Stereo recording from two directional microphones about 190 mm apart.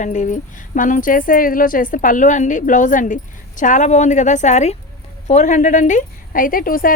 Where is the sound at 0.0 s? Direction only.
40° left (ahead or behind).